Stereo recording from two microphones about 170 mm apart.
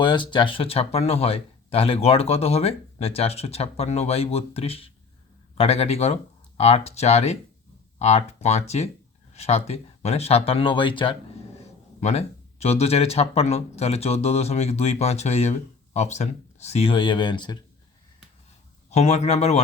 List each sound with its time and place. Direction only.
0.0 s speech: 30° left (ahead or behind)
18.9 s speech: 40° left (ahead or behind)